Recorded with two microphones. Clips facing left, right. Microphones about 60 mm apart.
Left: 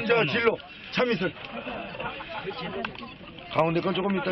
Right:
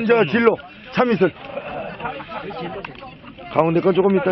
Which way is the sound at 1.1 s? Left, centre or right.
Right.